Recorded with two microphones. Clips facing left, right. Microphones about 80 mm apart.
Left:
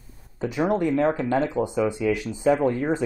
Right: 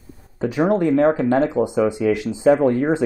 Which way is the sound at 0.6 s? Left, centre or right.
Right.